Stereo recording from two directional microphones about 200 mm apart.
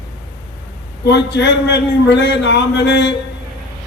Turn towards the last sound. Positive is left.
turn(degrees=60)  # may be behind; listen again after turning